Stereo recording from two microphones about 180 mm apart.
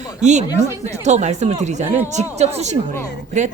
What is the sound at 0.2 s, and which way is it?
A woman's voice, 40° right (ahead or behind).